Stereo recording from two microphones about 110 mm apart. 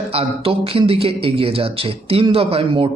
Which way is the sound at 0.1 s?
60° right (ahead or behind).